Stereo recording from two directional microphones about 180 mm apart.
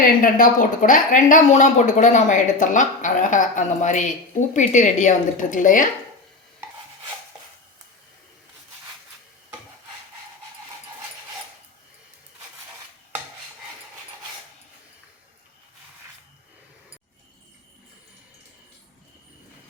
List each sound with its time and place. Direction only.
0.0 s speech: 50° left (ahead or behind)